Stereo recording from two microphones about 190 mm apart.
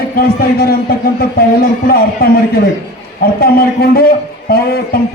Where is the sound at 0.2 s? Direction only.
55° left (ahead or behind).